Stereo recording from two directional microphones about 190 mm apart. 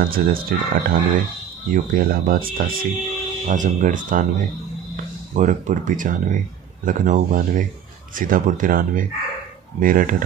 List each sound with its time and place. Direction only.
0.0 s speech: 50° right (ahead or behind)